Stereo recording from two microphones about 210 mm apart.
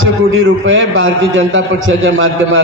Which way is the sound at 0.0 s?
65° right (ahead or behind).